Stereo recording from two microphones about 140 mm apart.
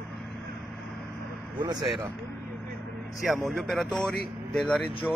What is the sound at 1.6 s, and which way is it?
Speech, 30° right (ahead or behind).